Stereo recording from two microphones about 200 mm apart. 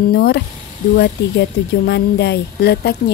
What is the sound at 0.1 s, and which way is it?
Speech, 55° left (ahead or behind).